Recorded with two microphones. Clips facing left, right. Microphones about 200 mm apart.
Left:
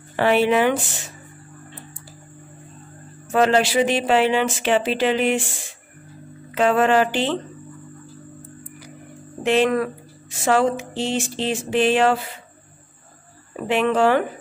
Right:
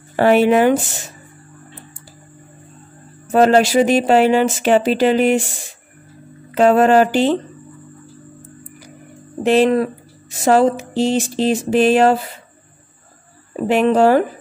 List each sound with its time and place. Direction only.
0.1 s speech: 45° right (ahead or behind)
3.3 s speech: 40° right (ahead or behind)
6.5 s speech: 40° right (ahead or behind)
9.4 s speech: 35° right (ahead or behind)
13.7 s speech: 40° right (ahead or behind)